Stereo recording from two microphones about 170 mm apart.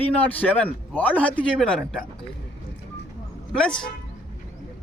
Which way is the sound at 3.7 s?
30° left (ahead or behind).